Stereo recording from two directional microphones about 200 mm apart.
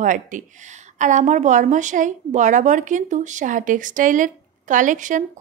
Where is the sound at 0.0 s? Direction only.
40° right (ahead or behind).